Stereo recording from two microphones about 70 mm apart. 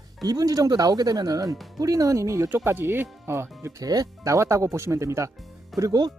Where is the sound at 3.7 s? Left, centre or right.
Right.